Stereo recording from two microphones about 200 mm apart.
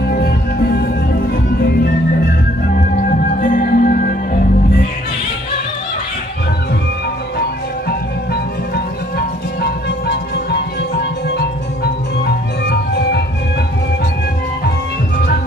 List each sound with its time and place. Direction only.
0.1 s music: 50° left (ahead or behind)
3.3 s music: 40° left (ahead or behind)
9.6 s music: 55° left (ahead or behind)